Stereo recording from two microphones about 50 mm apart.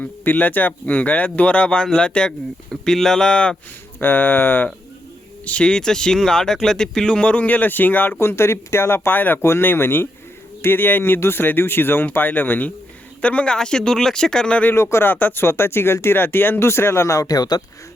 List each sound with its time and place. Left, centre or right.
0.0 s speech: left; by 3.5 s centre
4.0 s speech: left
5.5 s speech: left
13.2 s speech: left
14.8 s speech: left
15.0 s speech: left